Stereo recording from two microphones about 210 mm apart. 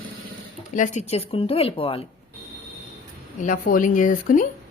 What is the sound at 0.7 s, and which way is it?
Speech, 35° left (ahead or behind).